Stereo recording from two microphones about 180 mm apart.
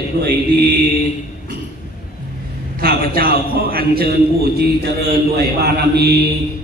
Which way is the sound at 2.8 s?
55° right (ahead or behind).